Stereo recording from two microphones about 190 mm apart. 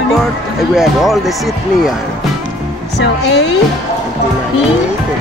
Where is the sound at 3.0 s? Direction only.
65° left (ahead or behind).